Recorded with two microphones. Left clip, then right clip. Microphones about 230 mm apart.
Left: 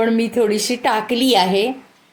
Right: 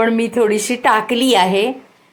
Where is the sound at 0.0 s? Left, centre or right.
Centre.